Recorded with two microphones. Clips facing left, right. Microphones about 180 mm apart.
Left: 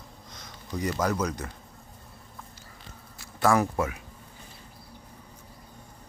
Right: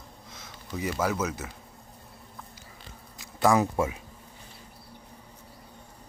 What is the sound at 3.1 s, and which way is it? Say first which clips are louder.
Speech: right 1 dB; 20° right (ahead or behind).